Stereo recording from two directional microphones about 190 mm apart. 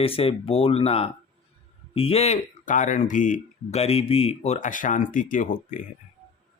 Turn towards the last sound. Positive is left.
turn(degrees=45)  # may be behind; listen again after turning